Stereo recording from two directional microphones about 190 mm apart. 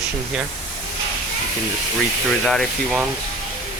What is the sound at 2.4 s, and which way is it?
Speech, centre (ahead or behind).